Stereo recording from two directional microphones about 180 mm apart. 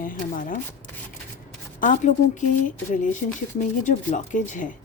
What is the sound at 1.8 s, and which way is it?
Speech, 45° left (ahead or behind).